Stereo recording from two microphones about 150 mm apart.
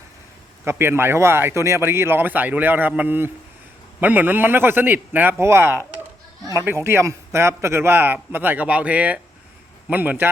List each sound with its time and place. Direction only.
0.6 s a man's voice: 15° right (ahead or behind)